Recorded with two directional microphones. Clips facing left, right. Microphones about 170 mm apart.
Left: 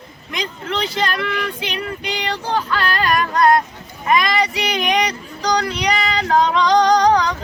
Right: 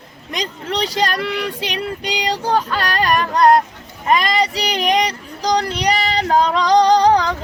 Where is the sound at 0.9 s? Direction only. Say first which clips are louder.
Right 3 dB; 40° right (ahead or behind).